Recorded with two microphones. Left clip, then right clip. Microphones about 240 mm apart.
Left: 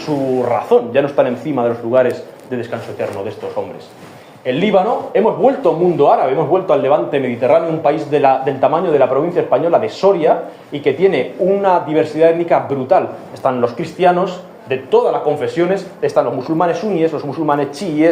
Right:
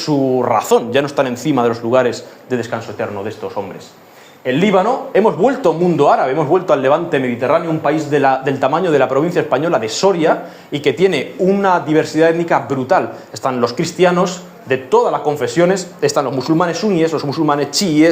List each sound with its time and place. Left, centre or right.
0.4 s a man's voice: right
4.4 s a man's voice: right